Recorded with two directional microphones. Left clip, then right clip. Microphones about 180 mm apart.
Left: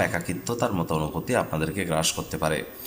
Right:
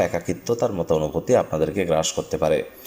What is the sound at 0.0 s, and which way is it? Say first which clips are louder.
A man's voice: right 4 dB; 15° right (ahead or behind).